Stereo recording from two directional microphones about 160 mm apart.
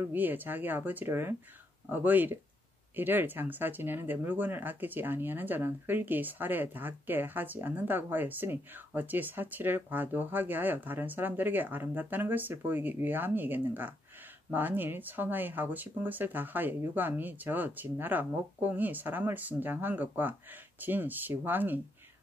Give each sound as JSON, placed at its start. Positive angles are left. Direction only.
{"t": 0.0, "sound": "speech", "side_deg": -10}